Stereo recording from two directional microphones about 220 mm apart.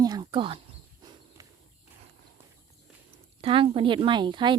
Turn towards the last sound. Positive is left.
turn(degrees=-20)  # may be behind; listen again after turning